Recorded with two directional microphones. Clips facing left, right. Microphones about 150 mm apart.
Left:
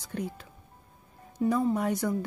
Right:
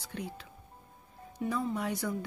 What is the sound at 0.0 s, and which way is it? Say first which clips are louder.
Speech: left 5 dB; 45° left (ahead or behind).